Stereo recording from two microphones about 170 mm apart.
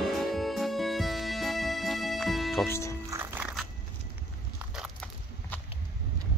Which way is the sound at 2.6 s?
15° left (ahead or behind).